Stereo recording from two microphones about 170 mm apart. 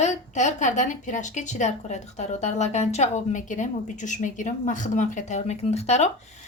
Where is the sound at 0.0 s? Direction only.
45° left (ahead or behind).